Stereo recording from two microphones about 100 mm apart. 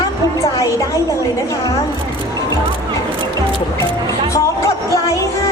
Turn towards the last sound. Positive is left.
turn(degrees=30)  # may be behind; listen again after turning